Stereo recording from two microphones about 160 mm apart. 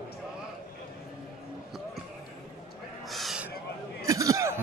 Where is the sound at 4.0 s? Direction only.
20° right (ahead or behind).